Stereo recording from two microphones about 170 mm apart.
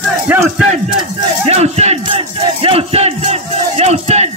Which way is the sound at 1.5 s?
40° right (ahead or behind).